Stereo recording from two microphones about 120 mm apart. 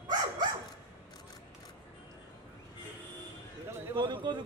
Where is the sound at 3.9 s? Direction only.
40° right (ahead or behind).